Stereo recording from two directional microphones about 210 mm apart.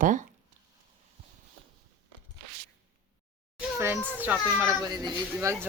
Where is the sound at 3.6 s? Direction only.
10° right (ahead or behind).